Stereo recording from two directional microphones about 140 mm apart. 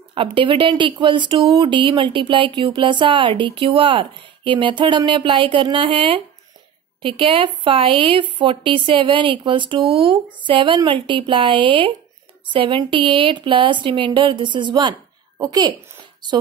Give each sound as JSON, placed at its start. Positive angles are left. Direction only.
{"t": 0.1, "sound": "speech", "side_deg": -35}